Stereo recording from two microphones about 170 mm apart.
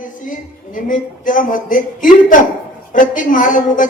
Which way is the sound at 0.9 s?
50° left (ahead or behind).